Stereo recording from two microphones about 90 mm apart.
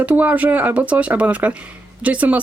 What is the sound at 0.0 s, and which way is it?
Speech, 15° right (ahead or behind).